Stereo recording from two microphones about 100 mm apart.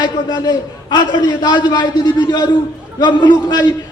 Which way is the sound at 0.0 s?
45° left (ahead or behind).